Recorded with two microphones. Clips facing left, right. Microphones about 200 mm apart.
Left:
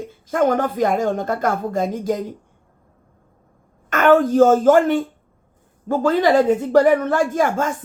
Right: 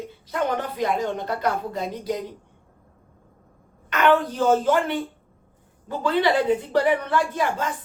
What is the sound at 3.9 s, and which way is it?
Speech, 45° left (ahead or behind).